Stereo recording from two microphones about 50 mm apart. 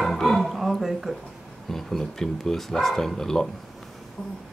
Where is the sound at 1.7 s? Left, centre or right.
Centre.